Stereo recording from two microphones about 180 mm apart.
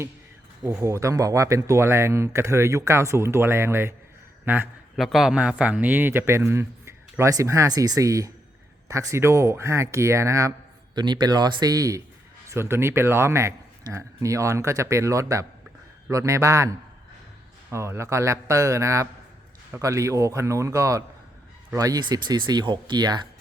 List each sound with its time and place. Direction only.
0.6 s speech: 15° right (ahead or behind)